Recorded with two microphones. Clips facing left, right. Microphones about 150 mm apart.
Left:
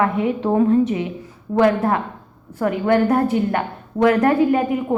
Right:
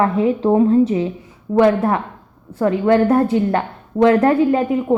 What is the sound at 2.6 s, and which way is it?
Speech, 25° right (ahead or behind).